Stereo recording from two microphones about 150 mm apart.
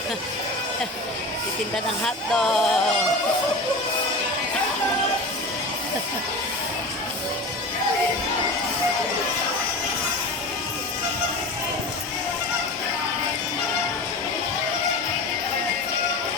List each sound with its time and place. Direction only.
1.7 s speech: 5° left (ahead or behind)